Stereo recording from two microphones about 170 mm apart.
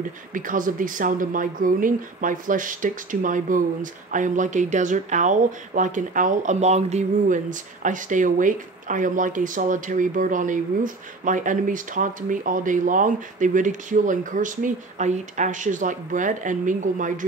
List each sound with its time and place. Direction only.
0.3 s speech: 50° right (ahead or behind)